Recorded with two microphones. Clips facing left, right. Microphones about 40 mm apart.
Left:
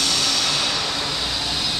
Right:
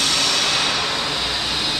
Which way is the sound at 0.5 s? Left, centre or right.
Centre.